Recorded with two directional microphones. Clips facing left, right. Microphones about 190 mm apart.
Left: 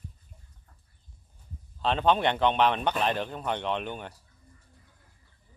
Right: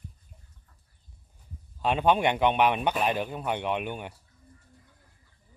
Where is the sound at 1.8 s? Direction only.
10° right (ahead or behind).